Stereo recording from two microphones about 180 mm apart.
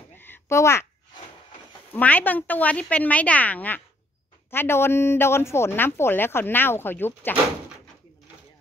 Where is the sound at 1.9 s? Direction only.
10° left (ahead or behind).